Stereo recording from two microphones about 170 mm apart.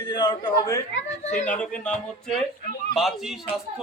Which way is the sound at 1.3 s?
10° left (ahead or behind).